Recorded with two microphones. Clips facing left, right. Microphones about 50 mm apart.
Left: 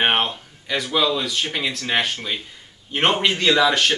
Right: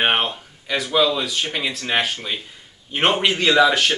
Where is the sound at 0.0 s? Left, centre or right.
Centre.